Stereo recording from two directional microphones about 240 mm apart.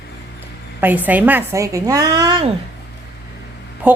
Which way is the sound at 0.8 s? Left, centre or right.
Centre.